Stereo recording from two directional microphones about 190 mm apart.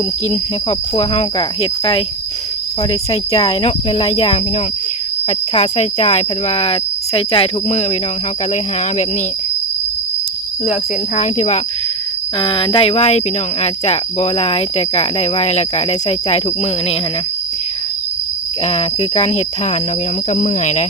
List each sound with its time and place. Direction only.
0.3 s speech: 30° left (ahead or behind)
11.2 s speech: 35° left (ahead or behind)
18.6 s speech: 30° left (ahead or behind)